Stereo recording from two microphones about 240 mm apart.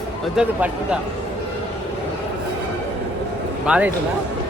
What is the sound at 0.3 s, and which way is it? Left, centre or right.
Speech, centre.